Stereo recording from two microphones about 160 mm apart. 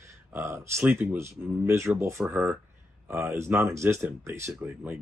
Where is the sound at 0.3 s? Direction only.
15° right (ahead or behind).